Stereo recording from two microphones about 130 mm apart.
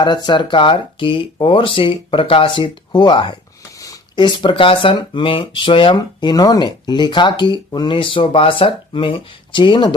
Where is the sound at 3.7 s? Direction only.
25° left (ahead or behind).